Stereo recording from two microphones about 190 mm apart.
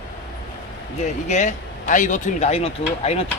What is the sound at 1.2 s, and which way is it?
Speech, 40° left (ahead or behind).